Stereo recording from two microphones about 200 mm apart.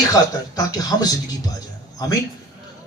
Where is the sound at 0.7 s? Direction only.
20° left (ahead or behind).